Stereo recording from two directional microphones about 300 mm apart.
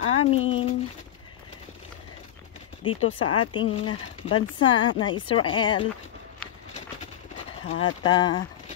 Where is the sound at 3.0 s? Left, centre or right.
Left.